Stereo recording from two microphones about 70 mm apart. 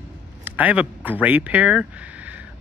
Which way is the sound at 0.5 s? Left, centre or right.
Right.